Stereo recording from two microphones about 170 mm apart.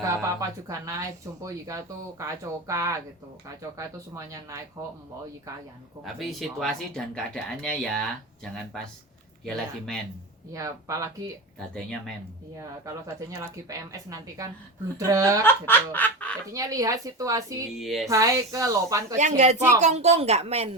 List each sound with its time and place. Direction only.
0.0 s speech: 20° right (ahead or behind)
6.1 s speech: centre (ahead or behind)
9.4 s speech: centre (ahead or behind)
10.5 s speech: 20° right (ahead or behind)
11.6 s speech: 5° left (ahead or behind)
12.5 s speech: 20° right (ahead or behind)
15.4 s snicker: 10° left (ahead or behind)
16.5 s speech: 20° right (ahead or behind)
17.7 s speech: centre (ahead or behind)
18.1 s speech: 20° right (ahead or behind)
19.8 s a woman's voice: 40° right (ahead or behind)